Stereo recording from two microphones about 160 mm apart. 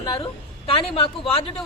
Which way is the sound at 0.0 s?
30° left (ahead or behind).